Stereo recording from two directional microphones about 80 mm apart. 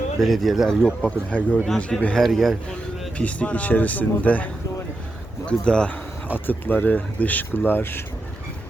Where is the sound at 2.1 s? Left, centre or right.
Centre.